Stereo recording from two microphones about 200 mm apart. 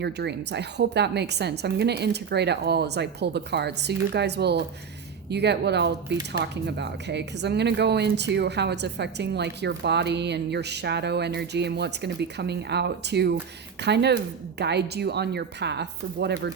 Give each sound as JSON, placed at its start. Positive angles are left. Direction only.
{"t": 0.0, "sound": "speech", "side_deg": -60}